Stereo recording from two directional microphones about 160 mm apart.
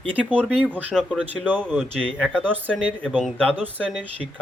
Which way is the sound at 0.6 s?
10° right (ahead or behind).